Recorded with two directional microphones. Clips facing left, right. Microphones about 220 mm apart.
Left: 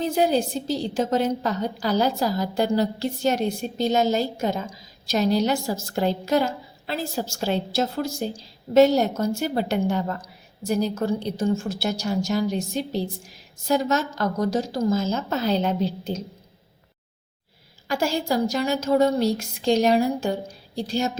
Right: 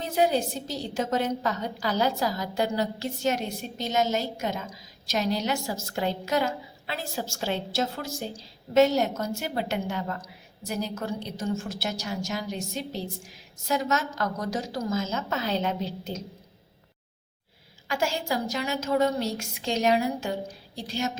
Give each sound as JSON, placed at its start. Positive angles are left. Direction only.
{"t": 0.0, "sound": "a woman's voice", "side_deg": 30}
{"t": 17.8, "sound": "a woman's voice", "side_deg": 35}